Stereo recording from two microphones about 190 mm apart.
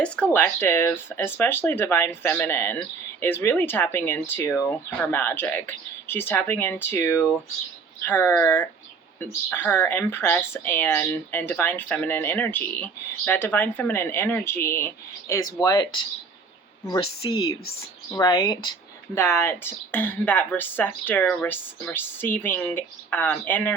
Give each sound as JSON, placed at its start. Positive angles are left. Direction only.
{"t": 0.0, "sound": "speech", "side_deg": 10}